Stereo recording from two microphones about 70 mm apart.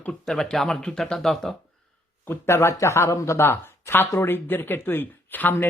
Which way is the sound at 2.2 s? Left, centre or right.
Left.